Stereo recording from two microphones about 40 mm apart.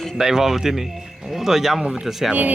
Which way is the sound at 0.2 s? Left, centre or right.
Centre.